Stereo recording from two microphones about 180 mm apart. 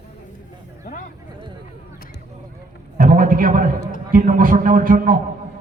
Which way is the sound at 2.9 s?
50° right (ahead or behind).